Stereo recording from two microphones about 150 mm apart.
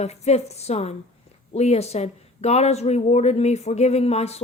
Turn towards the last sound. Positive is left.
turn(degrees=45)  # may be behind; listen again after turning